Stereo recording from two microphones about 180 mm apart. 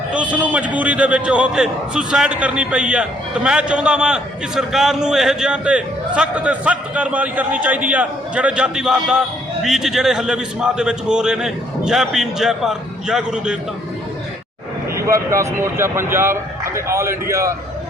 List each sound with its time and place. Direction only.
0.1 s a man's voice: 10° right (ahead or behind)
14.9 s speech: 15° right (ahead or behind)